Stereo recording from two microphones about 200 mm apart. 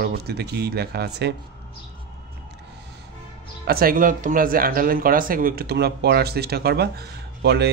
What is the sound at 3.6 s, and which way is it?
Speech, 45° right (ahead or behind).